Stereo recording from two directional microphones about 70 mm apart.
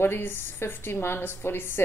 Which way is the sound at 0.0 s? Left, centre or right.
Left.